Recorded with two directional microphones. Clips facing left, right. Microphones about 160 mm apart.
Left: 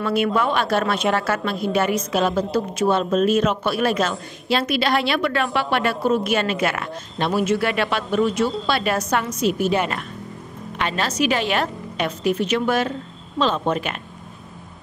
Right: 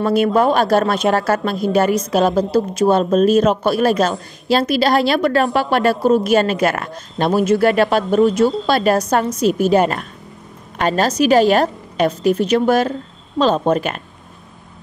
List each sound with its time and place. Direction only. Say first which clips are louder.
0.0 s speech: right 6 dB; 40° right (ahead or behind)